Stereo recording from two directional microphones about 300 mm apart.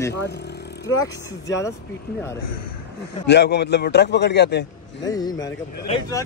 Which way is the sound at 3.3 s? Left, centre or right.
Left.